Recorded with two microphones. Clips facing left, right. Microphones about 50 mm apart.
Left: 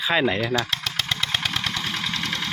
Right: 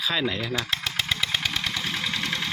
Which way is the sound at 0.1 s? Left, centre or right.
Left.